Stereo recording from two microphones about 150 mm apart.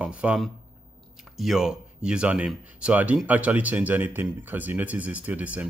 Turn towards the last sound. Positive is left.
turn(degrees=-10)  # may be behind; listen again after turning